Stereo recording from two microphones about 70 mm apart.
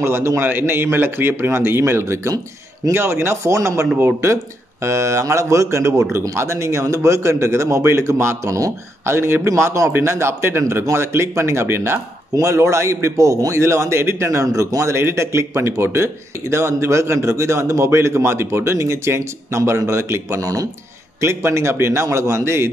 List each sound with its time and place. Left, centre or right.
0.0 s a man's voice: right
9.0 s speech: right
12.4 s a man's voice: right
21.2 s a man's voice: right